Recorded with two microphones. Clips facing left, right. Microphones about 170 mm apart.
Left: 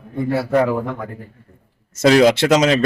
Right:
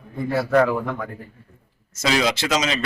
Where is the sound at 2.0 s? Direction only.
55° left (ahead or behind).